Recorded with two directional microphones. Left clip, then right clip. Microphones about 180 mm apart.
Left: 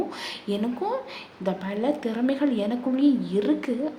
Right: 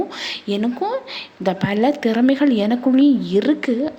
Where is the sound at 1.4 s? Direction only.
35° right (ahead or behind).